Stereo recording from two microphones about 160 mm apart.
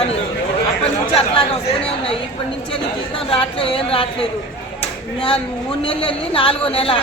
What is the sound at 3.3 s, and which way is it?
Speech, 35° left (ahead or behind).